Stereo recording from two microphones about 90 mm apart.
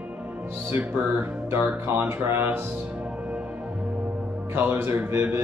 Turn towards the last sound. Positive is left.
turn(degrees=-25)  # may be behind; listen again after turning